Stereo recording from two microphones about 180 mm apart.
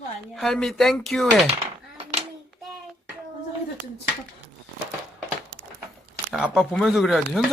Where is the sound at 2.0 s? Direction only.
35° right (ahead or behind).